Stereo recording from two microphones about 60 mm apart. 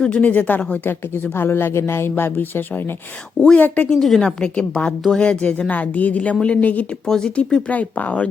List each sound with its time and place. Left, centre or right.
0.0 s speech: left
0.9 s speech: left
3.5 s speech: left
3.8 s a woman's voice: centre; by 6.8 s left
7.0 s speech: centre